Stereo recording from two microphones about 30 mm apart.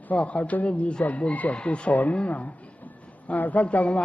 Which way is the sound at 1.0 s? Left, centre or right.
Left.